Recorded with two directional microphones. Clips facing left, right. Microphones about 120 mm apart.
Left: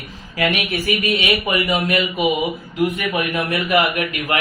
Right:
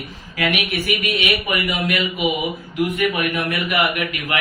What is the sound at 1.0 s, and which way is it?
Speech, 25° left (ahead or behind).